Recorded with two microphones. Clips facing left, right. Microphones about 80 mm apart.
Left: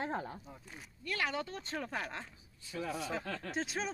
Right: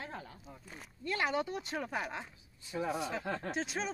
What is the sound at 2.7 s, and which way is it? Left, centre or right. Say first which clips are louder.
Speech: right 3 dB; right.